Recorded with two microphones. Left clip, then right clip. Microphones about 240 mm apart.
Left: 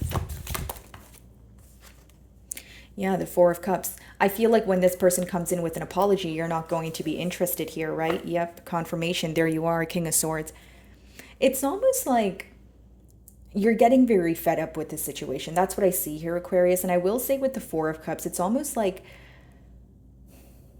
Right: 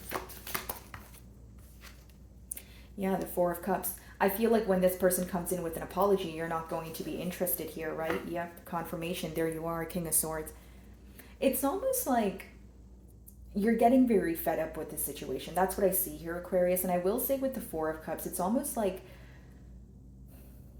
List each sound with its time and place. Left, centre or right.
0.1 s clip-clop: left
2.5 s a sound: left
3.3 s a woman's voice: left
13.5 s a woman's voice: left